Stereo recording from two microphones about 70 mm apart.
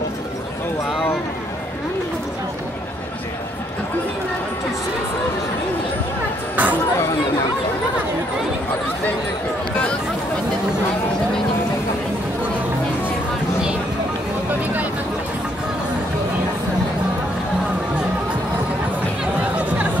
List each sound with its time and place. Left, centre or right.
6.5 s chatter: right